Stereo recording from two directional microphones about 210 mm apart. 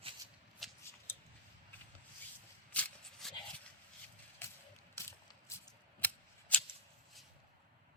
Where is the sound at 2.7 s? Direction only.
5° left (ahead or behind).